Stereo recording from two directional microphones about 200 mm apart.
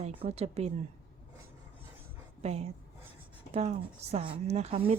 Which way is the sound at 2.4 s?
30° right (ahead or behind).